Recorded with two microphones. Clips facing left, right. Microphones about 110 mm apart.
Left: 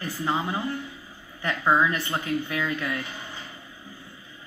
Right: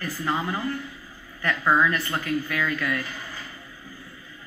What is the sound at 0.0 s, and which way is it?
Speech, 20° left (ahead or behind).